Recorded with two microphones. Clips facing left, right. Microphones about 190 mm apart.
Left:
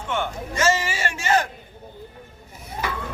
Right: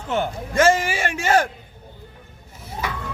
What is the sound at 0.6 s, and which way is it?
Speech, 55° right (ahead or behind).